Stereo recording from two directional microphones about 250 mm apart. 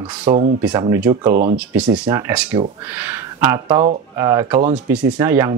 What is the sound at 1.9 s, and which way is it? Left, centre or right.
Speech, centre.